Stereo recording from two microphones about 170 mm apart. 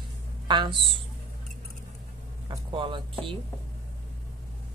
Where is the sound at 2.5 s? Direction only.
30° right (ahead or behind).